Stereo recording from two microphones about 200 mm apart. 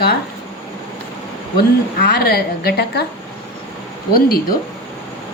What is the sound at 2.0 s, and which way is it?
A woman's voice, 50° left (ahead or behind).